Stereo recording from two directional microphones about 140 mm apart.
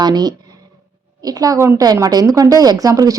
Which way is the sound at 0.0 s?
30° right (ahead or behind).